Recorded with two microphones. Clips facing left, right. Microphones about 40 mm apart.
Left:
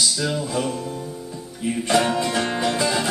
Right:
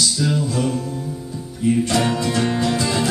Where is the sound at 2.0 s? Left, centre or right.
Centre.